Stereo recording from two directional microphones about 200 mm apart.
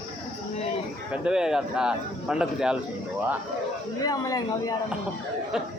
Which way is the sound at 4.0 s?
20° left (ahead or behind).